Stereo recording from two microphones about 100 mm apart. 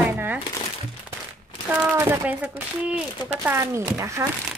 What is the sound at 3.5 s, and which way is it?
Speech, 25° right (ahead or behind).